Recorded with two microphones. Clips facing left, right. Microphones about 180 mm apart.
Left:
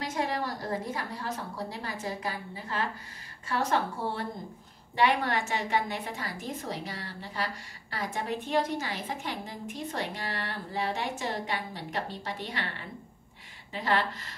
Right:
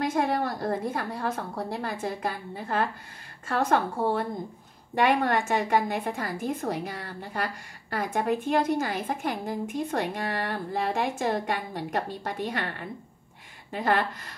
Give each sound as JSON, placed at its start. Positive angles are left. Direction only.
{"t": 0.0, "sound": "a woman's voice", "side_deg": -55}
{"t": 13.7, "sound": "speech", "side_deg": -50}